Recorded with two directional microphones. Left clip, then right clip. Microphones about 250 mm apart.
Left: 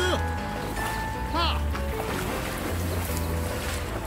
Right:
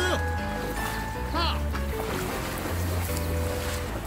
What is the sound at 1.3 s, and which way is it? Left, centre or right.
Music, centre.